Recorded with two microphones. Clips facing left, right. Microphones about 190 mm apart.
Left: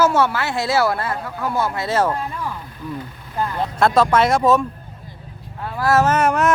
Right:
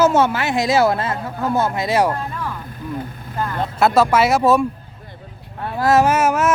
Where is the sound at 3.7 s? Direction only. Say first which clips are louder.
Right 1 dB; 5° right (ahead or behind).